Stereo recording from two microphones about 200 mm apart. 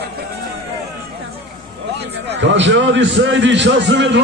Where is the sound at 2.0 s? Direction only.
60° right (ahead or behind).